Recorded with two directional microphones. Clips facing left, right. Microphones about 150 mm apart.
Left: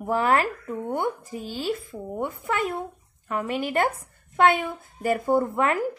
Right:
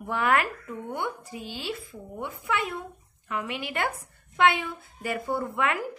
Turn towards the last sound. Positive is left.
turn(degrees=45)  # may be behind; listen again after turning